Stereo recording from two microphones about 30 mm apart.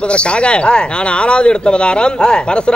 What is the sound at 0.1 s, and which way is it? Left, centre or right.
Speech, left.